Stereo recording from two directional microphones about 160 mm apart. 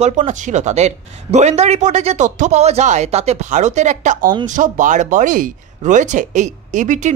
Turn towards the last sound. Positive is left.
turn(degrees=-50)  # may be behind; listen again after turning